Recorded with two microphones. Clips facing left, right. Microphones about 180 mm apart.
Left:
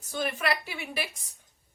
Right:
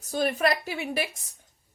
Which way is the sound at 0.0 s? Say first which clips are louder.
Right 6 dB; 40° right (ahead or behind).